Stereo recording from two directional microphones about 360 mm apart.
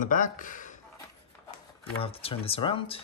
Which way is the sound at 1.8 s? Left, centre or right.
Centre.